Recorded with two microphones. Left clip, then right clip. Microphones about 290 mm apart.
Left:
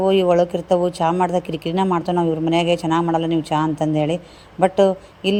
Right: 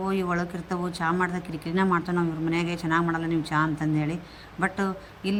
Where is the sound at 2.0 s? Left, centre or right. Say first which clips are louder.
Left 9 dB; centre.